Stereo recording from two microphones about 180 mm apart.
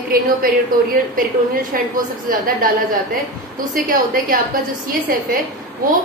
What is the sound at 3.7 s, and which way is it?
Speech, 50° right (ahead or behind).